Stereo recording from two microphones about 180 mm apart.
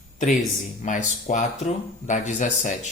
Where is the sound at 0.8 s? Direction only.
45° left (ahead or behind).